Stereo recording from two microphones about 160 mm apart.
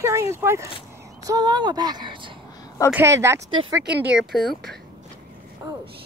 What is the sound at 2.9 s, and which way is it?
Speech, 15° right (ahead or behind).